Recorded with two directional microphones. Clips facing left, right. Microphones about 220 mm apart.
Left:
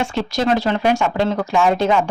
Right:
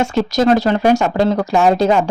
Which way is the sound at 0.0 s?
40° right (ahead or behind).